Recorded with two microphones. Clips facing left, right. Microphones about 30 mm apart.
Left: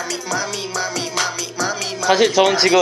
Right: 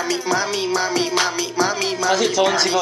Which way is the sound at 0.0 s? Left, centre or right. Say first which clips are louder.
Right 3 dB; centre.